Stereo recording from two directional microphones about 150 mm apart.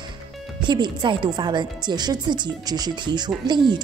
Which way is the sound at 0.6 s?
30° right (ahead or behind).